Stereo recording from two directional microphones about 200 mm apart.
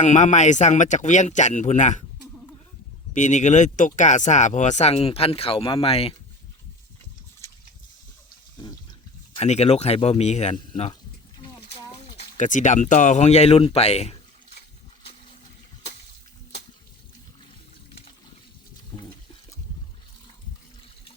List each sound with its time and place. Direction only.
0.0 s speech: 35° left (ahead or behind)
3.1 s speech: 35° left (ahead or behind)
9.3 s speech: 30° left (ahead or behind)
12.4 s speech: 40° left (ahead or behind)
18.9 s toilet flush: 25° left (ahead or behind)